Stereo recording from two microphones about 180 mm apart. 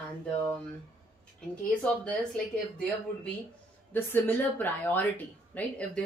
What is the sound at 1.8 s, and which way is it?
Speech, 5° left (ahead or behind).